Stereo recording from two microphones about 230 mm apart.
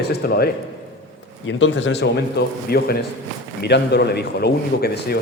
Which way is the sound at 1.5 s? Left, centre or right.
Left.